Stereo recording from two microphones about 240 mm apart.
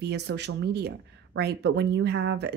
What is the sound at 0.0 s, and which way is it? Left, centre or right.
Speech, right.